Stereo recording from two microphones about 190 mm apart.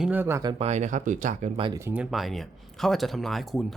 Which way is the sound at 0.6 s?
35° right (ahead or behind).